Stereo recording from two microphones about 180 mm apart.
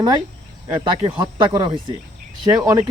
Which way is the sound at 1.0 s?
25° right (ahead or behind).